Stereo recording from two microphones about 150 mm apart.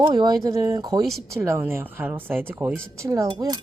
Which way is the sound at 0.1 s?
30° right (ahead or behind).